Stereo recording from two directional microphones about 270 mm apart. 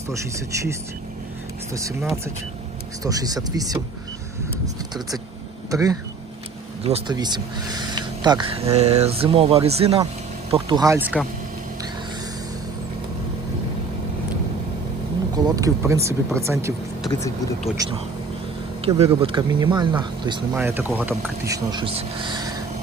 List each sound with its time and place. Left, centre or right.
0.1 s speech: centre
2.0 s speech: centre
3.0 s speech: centre
15.4 s speech: centre
17.1 s speech: centre
17.8 s speech: centre